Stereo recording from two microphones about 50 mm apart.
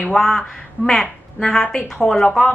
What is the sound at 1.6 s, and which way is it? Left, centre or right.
Speech, left.